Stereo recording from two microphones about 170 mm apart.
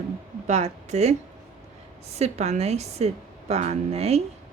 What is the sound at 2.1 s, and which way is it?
Speech, 40° right (ahead or behind).